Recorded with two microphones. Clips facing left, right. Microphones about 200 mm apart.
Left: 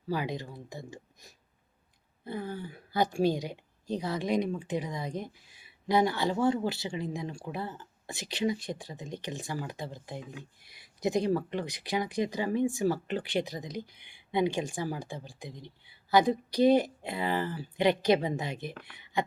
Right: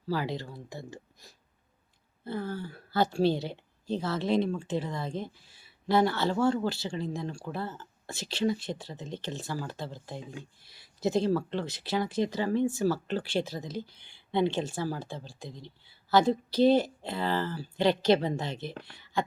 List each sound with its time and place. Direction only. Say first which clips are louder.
0.1 s speech: right 1 dB; 20° left (ahead or behind)
18.7 s speech: right 3 dB; 30° right (ahead or behind)
19.1 s a sound: even; 20° left (ahead or behind)